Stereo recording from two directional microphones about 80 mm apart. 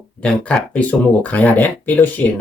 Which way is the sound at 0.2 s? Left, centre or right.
Centre.